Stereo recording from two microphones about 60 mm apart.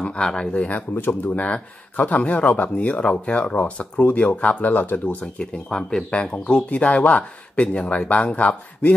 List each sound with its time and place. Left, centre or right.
0.0 s speech: centre